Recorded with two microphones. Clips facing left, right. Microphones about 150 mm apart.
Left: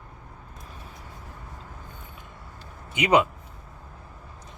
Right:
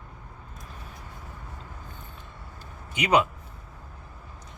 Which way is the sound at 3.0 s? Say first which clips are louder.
Left 2 dB; 20° left (ahead or behind).